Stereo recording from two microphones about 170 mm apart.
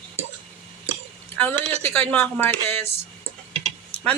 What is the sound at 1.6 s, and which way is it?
Speech, 40° right (ahead or behind).